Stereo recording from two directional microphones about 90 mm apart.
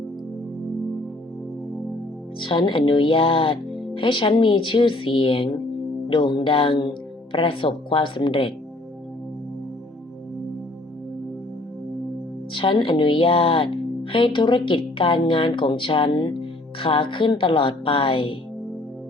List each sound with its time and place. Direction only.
2.4 s speech: 65° left (ahead or behind)
6.1 s speech: 65° left (ahead or behind)
12.5 s speech: 70° left (ahead or behind)
16.8 s speech: 75° left (ahead or behind)